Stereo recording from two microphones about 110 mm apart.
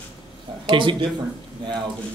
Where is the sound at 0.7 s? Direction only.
50° right (ahead or behind).